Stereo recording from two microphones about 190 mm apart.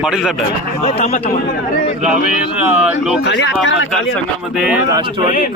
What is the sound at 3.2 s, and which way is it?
Speech, 65° left (ahead or behind).